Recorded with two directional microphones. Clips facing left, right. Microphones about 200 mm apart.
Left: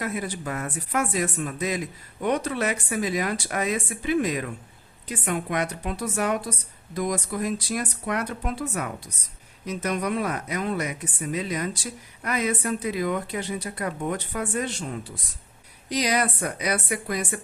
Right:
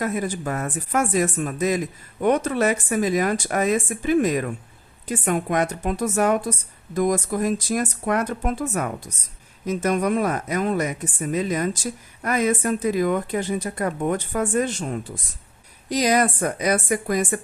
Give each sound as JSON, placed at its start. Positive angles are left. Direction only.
{"t": 0.0, "sound": "a woman's voice", "side_deg": -45}